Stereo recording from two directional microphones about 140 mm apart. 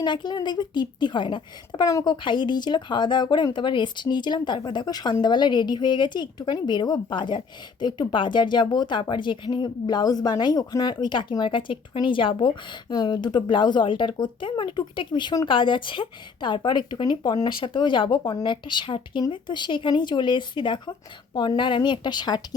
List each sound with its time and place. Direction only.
0.0 s a woman's voice: 30° left (ahead or behind)